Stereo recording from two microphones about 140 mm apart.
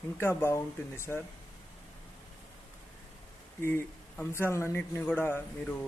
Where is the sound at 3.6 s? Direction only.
15° left (ahead or behind).